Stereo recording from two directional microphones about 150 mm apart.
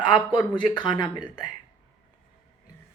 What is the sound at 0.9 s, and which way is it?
Speech, 25° left (ahead or behind).